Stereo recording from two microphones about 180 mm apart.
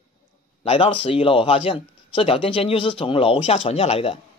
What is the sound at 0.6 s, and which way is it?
Speech, 30° left (ahead or behind).